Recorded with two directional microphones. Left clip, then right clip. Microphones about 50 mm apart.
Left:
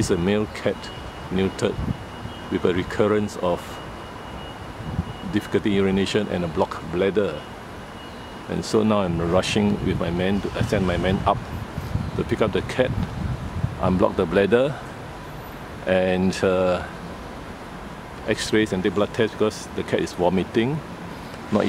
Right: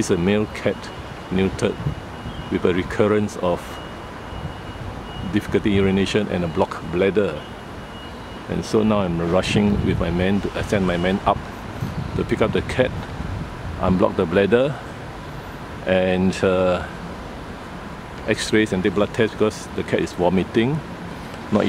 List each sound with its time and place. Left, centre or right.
0.0 s speech: centre
5.3 s speech: centre
8.5 s speech: centre
15.8 s speech: centre
18.2 s speech: centre